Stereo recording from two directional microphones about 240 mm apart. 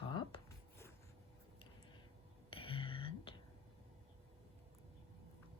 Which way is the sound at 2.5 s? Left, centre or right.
Left.